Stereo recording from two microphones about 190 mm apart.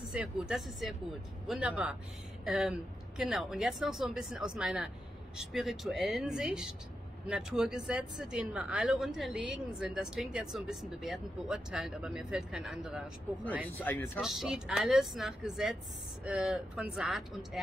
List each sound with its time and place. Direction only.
0.1 s speech: 5° right (ahead or behind)
13.7 s speech: 10° left (ahead or behind)
14.2 s speech: centre (ahead or behind)